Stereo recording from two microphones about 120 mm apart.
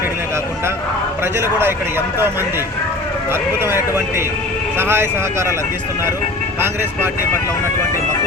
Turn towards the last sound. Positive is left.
turn(degrees=-20)  # may be behind; listen again after turning